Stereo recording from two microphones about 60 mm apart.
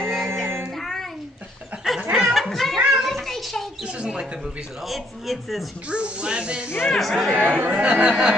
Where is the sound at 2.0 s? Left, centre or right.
Centre.